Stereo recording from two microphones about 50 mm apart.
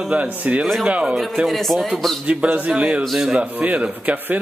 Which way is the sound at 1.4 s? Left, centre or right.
Centre.